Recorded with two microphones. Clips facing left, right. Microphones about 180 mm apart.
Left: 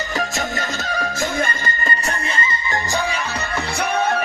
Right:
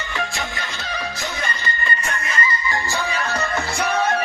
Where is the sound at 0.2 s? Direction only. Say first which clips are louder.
Left 3 dB; 45° left (ahead or behind); by 3.1 s 20° left (ahead or behind).